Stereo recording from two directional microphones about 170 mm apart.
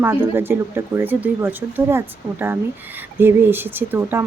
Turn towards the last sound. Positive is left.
turn(degrees=-10)  # may be behind; listen again after turning